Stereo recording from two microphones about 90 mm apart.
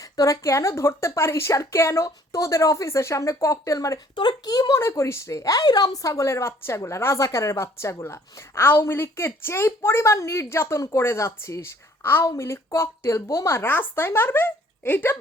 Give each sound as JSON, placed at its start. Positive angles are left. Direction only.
{"t": 0.0, "sound": "speech", "side_deg": 40}
{"t": 4.1, "sound": "speech", "side_deg": 55}
{"t": 4.8, "sound": "speech", "side_deg": 30}